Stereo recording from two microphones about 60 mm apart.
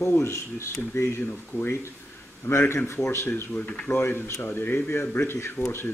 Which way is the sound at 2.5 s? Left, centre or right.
Left.